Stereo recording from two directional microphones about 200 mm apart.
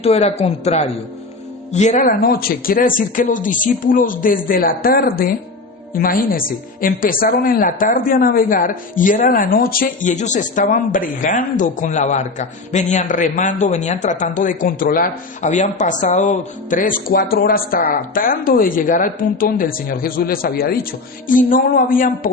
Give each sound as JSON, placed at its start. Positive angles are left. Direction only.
{"t": 0.0, "sound": "a woman's voice", "side_deg": 30}